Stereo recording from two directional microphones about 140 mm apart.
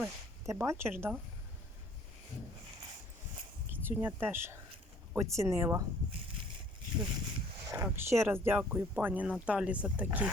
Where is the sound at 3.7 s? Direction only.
15° right (ahead or behind).